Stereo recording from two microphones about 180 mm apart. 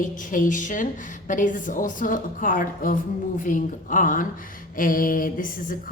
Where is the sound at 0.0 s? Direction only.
45° left (ahead or behind).